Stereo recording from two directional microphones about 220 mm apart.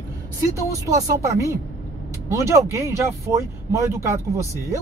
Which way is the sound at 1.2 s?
15° right (ahead or behind).